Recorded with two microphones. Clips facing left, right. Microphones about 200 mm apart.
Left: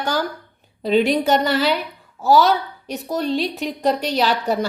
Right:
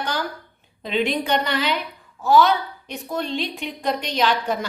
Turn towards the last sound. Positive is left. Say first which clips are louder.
# left 2 dB
turn(degrees=40)  # may be behind; listen again after turning